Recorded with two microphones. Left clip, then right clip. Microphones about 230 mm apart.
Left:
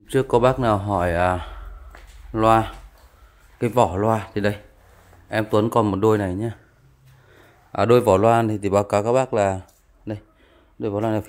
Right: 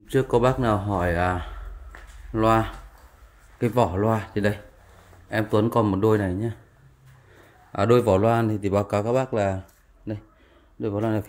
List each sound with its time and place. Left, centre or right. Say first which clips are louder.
0.1 s speech: left 3 dB; left
7.7 s a man's voice: left 3 dB; left
9.3 s a sound: left 4 dB; left
10.8 s speech: left 3 dB; left